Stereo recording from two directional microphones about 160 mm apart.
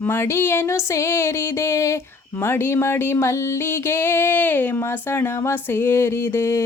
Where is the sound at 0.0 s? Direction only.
15° left (ahead or behind).